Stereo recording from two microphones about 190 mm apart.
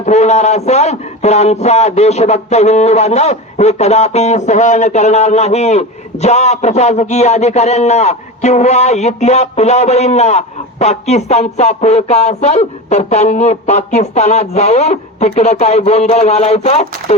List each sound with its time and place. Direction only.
0.0 s a man's voice: 35° left (ahead or behind)